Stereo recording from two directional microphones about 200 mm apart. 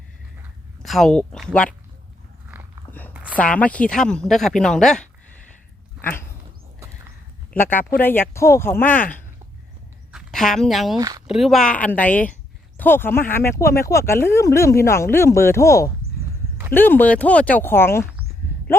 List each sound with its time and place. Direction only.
0.8 s speech: centre (ahead or behind)
3.3 s speech: 5° left (ahead or behind)
6.0 s dog: 10° left (ahead or behind)
7.5 s speech: 10° left (ahead or behind)
10.9 s speech: 20° right (ahead or behind)
11.3 s speech: centre (ahead or behind)